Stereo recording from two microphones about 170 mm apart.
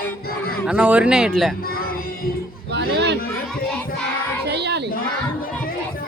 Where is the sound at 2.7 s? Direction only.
75° right (ahead or behind).